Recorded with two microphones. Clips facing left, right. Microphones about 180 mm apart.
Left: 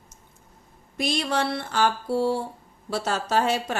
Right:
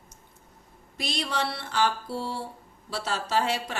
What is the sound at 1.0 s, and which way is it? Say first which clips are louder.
A woman's voice: left 5 dB; 50° left (ahead or behind).